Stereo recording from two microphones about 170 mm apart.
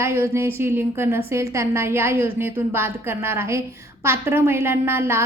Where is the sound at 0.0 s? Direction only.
15° right (ahead or behind).